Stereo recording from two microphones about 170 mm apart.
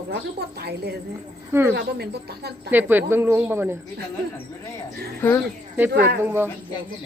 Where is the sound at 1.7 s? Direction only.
70° right (ahead or behind).